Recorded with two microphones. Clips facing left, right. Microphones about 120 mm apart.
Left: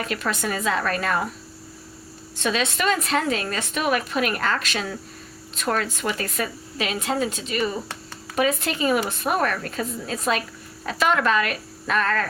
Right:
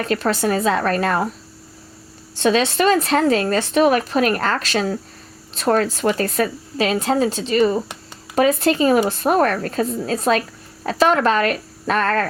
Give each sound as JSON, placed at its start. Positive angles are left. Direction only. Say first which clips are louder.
{"t": 0.0, "sound": "speech", "louder": "right 7 dB", "side_deg": -35}
{"t": 2.3, "sound": "speech", "louder": "right 7 dB", "side_deg": -35}